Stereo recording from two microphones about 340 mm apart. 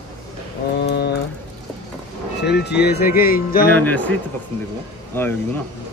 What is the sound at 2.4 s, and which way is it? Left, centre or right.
Speech, left.